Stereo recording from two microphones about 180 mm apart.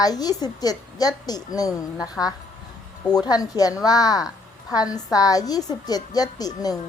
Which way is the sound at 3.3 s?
20° left (ahead or behind).